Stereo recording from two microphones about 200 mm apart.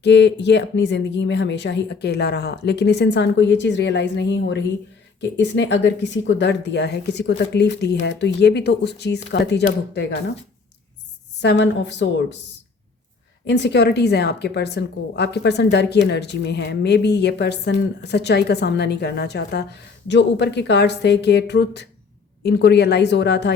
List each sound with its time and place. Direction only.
0.0 s a woman's voice: 60° left (ahead or behind)
11.4 s a woman's voice: 60° left (ahead or behind)
13.5 s a woman's voice: 60° left (ahead or behind)